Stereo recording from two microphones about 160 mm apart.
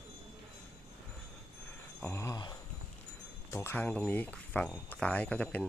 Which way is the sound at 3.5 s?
15° left (ahead or behind).